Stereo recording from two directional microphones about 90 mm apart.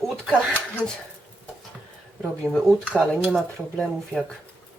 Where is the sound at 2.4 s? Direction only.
10° left (ahead or behind).